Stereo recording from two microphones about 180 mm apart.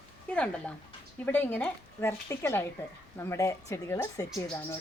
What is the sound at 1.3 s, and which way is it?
Speech, 10° left (ahead or behind).